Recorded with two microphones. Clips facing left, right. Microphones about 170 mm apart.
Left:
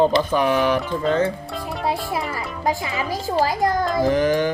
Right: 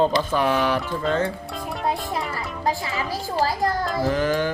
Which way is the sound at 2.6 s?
15° left (ahead or behind).